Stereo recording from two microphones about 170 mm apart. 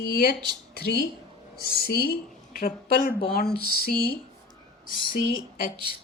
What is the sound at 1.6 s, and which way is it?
Speech, 65° right (ahead or behind).